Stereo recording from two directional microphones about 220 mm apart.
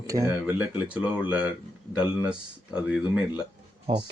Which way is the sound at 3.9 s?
25° right (ahead or behind).